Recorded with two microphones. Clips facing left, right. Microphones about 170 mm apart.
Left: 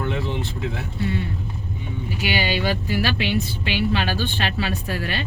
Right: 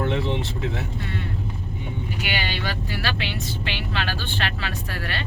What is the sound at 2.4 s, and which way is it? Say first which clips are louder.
Speech: left 6 dB; 10° left (ahead or behind).